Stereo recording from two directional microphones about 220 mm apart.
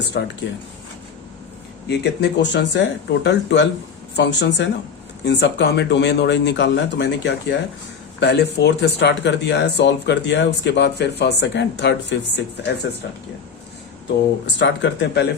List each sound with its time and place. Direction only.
0.1 s speech: 50° left (ahead or behind)
1.9 s speech: 50° left (ahead or behind)
14.6 s speech: 55° left (ahead or behind)